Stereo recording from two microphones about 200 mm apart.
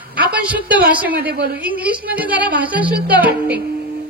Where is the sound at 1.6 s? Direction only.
5° right (ahead or behind).